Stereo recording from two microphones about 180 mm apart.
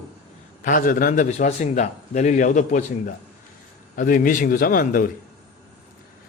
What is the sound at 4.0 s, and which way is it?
A man's voice, 50° left (ahead or behind).